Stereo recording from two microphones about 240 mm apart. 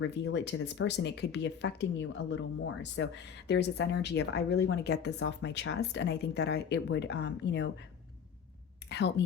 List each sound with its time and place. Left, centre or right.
0.0 s speech: left
8.9 s speech: left